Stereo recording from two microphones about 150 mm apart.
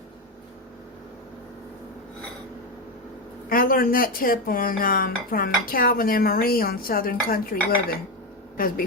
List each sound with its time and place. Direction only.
3.5 s speech: 70° left (ahead or behind)